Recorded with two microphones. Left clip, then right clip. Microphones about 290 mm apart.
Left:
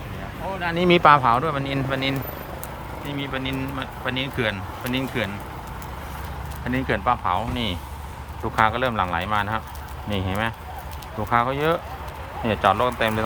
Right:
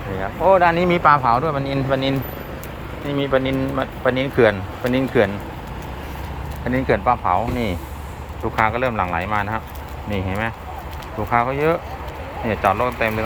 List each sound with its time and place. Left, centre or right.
0.6 s speech: centre
3.2 s speech: centre
6.7 s speech: centre